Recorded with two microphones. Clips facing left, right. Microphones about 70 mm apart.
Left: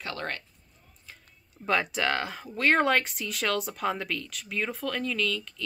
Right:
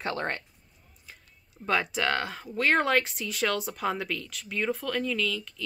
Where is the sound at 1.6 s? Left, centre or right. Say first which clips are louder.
Even; centre.